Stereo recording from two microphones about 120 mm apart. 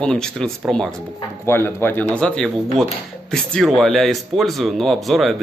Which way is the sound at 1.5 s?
20° left (ahead or behind).